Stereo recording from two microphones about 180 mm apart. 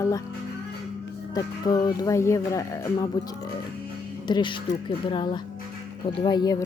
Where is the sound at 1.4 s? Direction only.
20° left (ahead or behind).